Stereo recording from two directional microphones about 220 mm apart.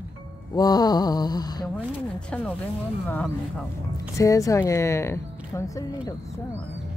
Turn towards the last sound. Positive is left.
turn(degrees=15)  # may be behind; listen again after turning